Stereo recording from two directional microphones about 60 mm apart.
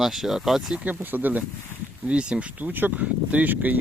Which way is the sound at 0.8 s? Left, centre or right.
Right.